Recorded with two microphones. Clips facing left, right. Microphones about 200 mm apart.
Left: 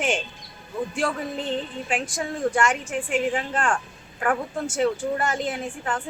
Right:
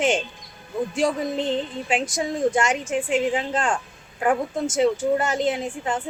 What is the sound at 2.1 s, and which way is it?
A woman's voice, 20° right (ahead or behind).